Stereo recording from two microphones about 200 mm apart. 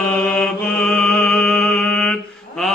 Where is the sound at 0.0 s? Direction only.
Centre (ahead or behind).